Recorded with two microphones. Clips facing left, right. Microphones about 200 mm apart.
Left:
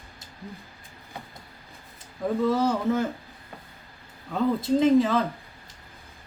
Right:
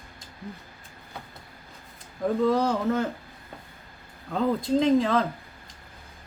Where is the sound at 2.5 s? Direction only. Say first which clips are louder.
Even; 5° left (ahead or behind).